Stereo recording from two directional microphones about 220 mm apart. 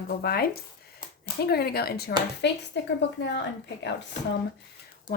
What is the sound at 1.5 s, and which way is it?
Speech, 45° left (ahead or behind).